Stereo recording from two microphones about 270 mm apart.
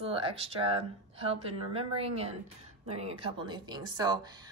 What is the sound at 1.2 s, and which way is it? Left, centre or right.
A woman's voice, right.